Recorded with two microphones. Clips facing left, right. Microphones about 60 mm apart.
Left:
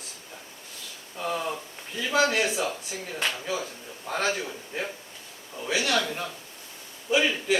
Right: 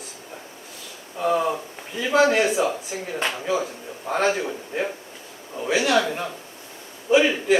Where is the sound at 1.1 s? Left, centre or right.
Centre.